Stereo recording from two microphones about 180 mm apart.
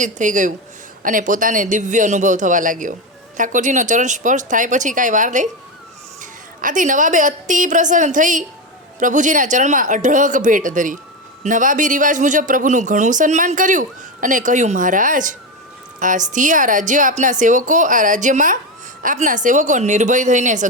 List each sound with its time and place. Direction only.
0.0 s speech: 45° right (ahead or behind)
6.6 s a woman's voice: 45° right (ahead or behind)